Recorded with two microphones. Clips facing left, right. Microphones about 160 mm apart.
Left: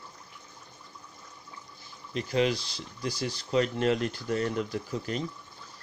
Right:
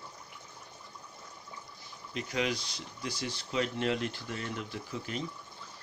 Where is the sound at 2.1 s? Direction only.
30° left (ahead or behind).